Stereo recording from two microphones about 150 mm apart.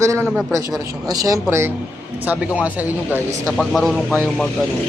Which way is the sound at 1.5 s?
15° right (ahead or behind).